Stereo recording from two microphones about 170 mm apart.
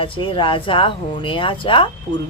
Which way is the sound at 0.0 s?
30° left (ahead or behind).